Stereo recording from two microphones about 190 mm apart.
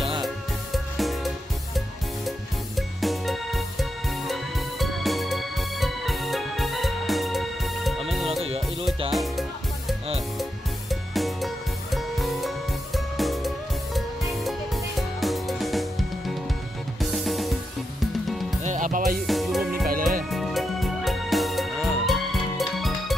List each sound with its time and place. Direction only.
0.9 s music: centre (ahead or behind)
3.0 s music: centre (ahead or behind)
18.6 s music: 40° right (ahead or behind)
19.2 s music: centre (ahead or behind)
19.9 s music: 45° right (ahead or behind)
20.2 s music: centre (ahead or behind)